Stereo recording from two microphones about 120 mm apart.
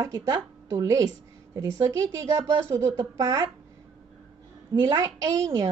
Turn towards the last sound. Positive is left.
turn(degrees=-30)  # may be behind; listen again after turning